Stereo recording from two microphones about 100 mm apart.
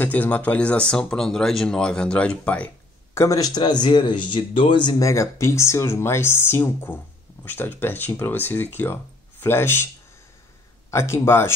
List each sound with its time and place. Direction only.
0.0 s speech: 15° left (ahead or behind)
3.2 s speech: 35° left (ahead or behind); by 5.0 s 50° left (ahead or behind)
5.0 s speech: 30° left (ahead or behind)
10.9 s speech: 25° left (ahead or behind)